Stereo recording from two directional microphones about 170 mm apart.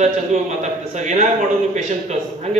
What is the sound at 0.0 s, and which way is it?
A man's voice, 45° right (ahead or behind).